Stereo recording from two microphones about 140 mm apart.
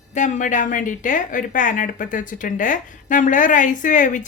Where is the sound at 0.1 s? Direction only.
65° left (ahead or behind).